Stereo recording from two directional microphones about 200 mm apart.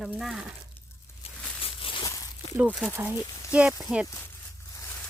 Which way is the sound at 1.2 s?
30° left (ahead or behind).